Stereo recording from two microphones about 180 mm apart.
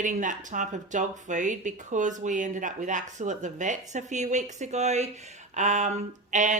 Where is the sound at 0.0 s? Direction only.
45° right (ahead or behind).